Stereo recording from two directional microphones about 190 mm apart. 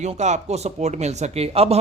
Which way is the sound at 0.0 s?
35° right (ahead or behind).